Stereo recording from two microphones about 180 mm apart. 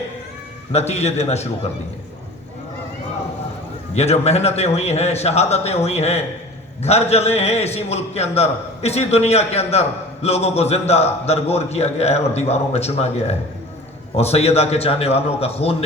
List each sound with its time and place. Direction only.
0.7 s a man's voice: 35° left (ahead or behind)
3.9 s a man's voice: 35° left (ahead or behind)